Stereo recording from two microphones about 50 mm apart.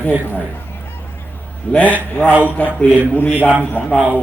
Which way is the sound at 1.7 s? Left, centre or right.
Left.